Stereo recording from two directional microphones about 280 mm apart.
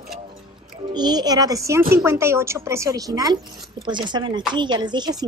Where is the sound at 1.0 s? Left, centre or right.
Centre.